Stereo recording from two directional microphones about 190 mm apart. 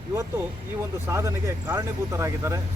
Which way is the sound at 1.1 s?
15° right (ahead or behind).